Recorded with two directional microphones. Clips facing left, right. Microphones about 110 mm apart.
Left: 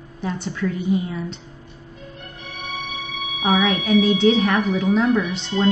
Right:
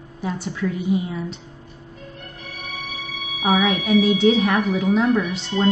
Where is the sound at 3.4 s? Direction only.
5° right (ahead or behind).